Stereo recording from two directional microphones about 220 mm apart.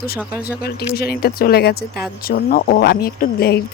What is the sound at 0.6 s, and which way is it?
Speech, 45° left (ahead or behind).